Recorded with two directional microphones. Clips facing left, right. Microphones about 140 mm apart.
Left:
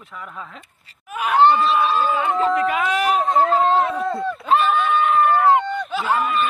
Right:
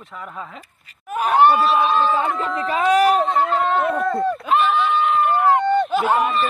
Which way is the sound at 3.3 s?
40° left (ahead or behind).